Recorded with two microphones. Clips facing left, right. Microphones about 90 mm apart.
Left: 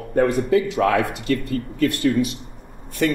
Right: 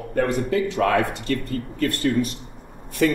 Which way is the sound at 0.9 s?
30° right (ahead or behind).